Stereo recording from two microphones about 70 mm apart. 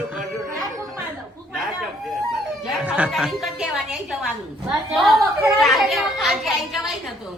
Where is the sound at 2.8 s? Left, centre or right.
Centre.